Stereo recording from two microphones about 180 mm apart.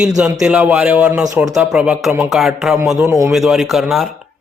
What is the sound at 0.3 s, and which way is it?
A man's voice, 5° right (ahead or behind).